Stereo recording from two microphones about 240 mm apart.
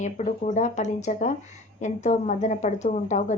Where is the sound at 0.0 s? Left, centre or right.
Left.